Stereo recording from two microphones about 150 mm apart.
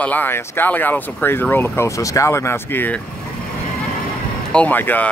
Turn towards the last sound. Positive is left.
turn(degrees=10)  # may be behind; listen again after turning